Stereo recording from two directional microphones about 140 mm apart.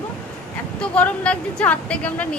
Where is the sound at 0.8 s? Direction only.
10° left (ahead or behind).